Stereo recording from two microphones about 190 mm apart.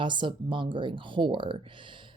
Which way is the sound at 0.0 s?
25° right (ahead or behind).